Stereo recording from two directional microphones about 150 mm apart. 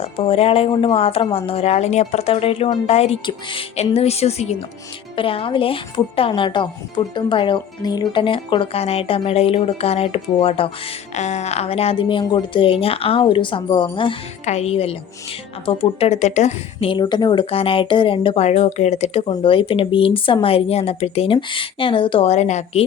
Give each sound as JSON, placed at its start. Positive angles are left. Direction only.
{"t": 0.0, "sound": "speech", "side_deg": 40}
{"t": 11.1, "sound": "speech", "side_deg": 50}
{"t": 14.4, "sound": "a woman's voice", "side_deg": 45}
{"t": 17.0, "sound": "speech", "side_deg": 30}